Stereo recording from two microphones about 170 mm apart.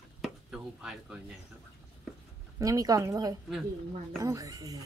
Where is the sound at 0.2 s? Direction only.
5° right (ahead or behind).